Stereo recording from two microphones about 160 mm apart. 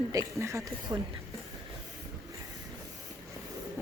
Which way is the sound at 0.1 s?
20° right (ahead or behind).